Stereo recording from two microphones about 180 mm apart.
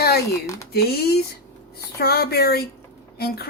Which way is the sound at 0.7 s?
60° left (ahead or behind).